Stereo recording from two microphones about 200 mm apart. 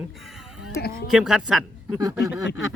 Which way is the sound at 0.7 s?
50° left (ahead or behind).